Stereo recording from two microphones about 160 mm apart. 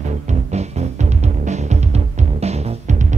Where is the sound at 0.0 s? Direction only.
45° right (ahead or behind).